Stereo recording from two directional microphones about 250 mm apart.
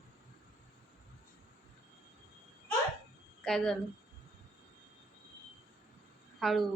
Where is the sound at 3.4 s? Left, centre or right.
Centre.